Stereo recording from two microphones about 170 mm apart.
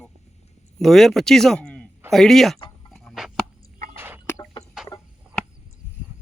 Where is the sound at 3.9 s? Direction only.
15° right (ahead or behind).